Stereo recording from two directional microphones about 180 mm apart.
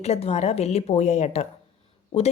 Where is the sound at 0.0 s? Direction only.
35° left (ahead or behind).